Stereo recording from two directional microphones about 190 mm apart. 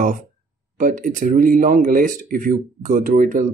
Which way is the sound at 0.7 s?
45° right (ahead or behind).